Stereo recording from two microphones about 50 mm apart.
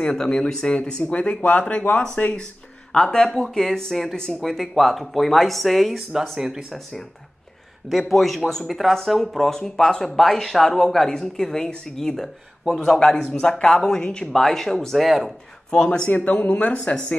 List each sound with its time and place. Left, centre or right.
0.0 s speech: centre
2.9 s speech: centre
15.7 s speech: centre
16.1 s speech: left